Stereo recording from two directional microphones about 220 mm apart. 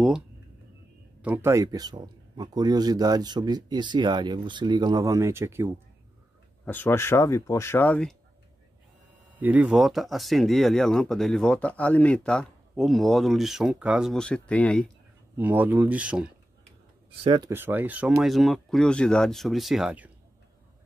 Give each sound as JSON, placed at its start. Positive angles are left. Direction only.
{"t": 1.2, "sound": "speech", "side_deg": -10}
{"t": 6.6, "sound": "speech", "side_deg": 10}
{"t": 9.3, "sound": "speech", "side_deg": -5}
{"t": 15.3, "sound": "speech", "side_deg": -10}
{"t": 17.2, "sound": "speech", "side_deg": -25}
{"t": 17.5, "sound": "speech", "side_deg": -10}